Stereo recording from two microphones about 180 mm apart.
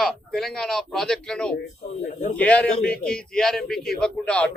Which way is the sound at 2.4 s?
5° left (ahead or behind).